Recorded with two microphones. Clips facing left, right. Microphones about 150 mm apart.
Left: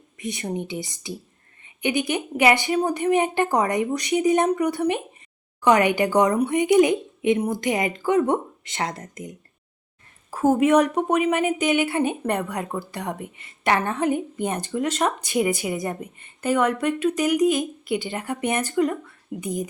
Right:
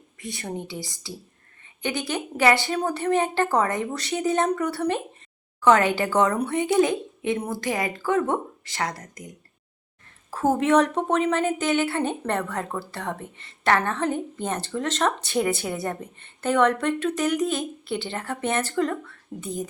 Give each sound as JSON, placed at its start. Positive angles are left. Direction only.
{"t": 0.2, "sound": "a woman's voice", "side_deg": 20}
{"t": 10.3, "sound": "a woman's voice", "side_deg": 10}